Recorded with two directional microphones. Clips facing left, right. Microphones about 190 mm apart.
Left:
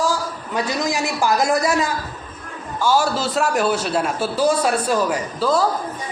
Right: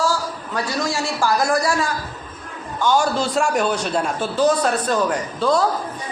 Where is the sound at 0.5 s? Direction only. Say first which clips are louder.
Left 2 dB; 20° left (ahead or behind).